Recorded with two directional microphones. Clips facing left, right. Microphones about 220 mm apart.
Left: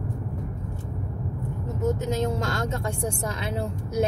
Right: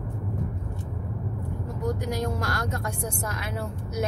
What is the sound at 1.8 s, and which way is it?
Speech, 25° left (ahead or behind).